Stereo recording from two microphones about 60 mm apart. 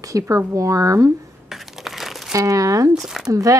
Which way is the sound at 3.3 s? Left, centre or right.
Right.